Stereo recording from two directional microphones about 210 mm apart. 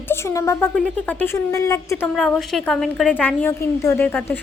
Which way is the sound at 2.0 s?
5° left (ahead or behind).